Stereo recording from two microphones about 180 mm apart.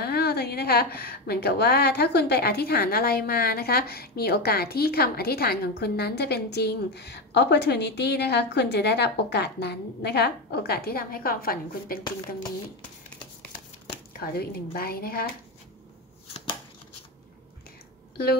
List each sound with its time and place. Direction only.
0.0 s a woman's voice: 60° left (ahead or behind)
14.2 s a woman's voice: 60° left (ahead or behind)
18.1 s speech: 60° left (ahead or behind)